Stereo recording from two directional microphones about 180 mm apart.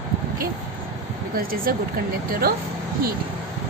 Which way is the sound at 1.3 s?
55° right (ahead or behind).